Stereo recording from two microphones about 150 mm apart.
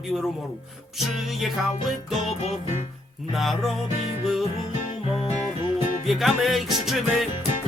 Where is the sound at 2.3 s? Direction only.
45° left (ahead or behind).